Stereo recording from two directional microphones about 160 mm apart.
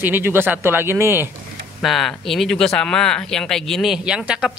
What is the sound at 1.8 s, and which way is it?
A man's voice, centre (ahead or behind).